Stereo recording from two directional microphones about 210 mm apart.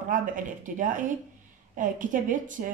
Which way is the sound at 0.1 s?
40° right (ahead or behind).